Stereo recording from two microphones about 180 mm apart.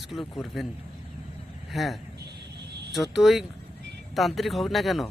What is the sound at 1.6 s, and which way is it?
Speech, centre (ahead or behind).